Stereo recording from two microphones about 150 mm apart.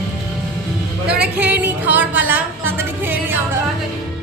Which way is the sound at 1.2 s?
10° right (ahead or behind).